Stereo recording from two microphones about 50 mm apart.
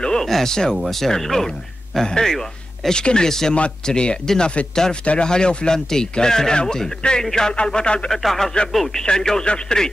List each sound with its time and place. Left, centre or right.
0.0 s speech: centre
8.1 s speech: centre